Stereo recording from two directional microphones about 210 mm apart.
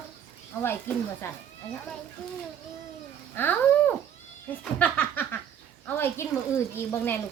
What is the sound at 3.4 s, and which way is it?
Speech, 10° left (ahead or behind).